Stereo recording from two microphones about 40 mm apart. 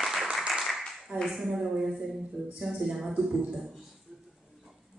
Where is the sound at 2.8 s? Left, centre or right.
Centre.